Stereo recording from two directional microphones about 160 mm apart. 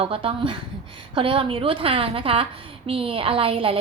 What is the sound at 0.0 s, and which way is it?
A woman's voice, 35° right (ahead or behind).